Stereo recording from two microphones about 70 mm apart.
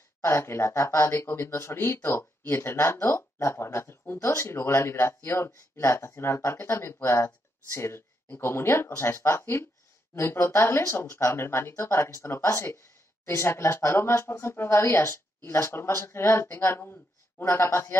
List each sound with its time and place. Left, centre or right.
0.2 s speech: left